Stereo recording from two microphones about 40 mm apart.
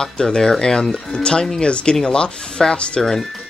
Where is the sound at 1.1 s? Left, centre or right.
Left.